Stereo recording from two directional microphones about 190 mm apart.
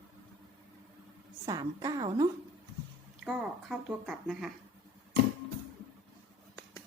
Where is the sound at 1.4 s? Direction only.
20° right (ahead or behind).